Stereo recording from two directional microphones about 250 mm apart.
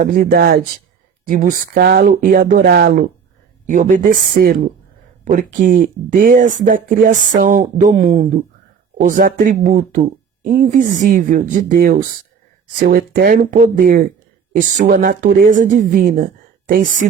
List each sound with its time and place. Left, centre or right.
0.0 s speech: right